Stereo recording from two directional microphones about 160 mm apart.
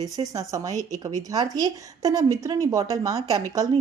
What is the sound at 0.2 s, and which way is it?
A woman's voice, 20° right (ahead or behind).